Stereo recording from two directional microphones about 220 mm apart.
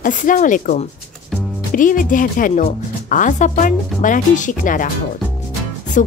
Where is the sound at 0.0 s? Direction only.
35° left (ahead or behind).